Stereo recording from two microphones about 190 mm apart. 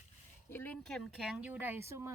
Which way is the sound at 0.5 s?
10° left (ahead or behind).